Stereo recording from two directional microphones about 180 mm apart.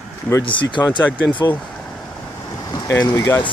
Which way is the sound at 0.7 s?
25° left (ahead or behind).